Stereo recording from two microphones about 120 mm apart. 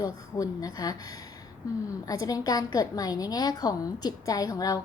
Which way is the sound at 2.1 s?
30° left (ahead or behind).